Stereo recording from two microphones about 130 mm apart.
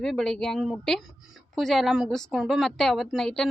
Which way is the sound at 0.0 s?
5° left (ahead or behind).